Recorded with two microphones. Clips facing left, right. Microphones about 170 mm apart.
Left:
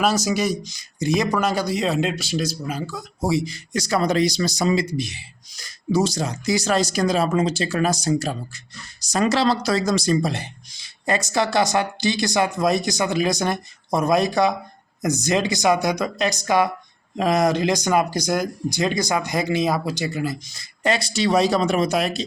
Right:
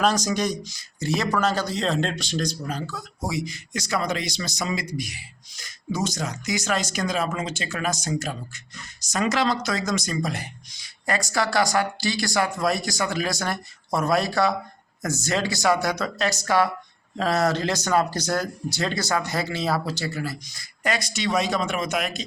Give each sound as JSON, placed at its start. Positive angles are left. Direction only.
{"t": 0.0, "sound": "speech", "side_deg": 5}
{"t": 3.2, "sound": "a man's voice", "side_deg": 30}